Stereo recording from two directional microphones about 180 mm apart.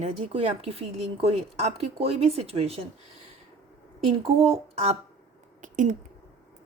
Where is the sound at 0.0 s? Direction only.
30° right (ahead or behind).